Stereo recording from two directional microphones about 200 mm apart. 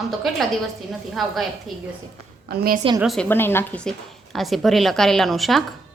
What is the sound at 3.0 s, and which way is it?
Speech, 5° left (ahead or behind).